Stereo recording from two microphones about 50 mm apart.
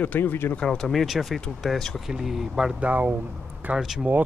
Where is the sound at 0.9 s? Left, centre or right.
Centre.